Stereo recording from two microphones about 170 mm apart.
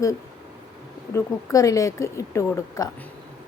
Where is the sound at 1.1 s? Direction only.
20° left (ahead or behind).